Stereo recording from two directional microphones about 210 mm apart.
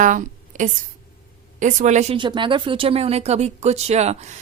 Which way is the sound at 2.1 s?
20° right (ahead or behind).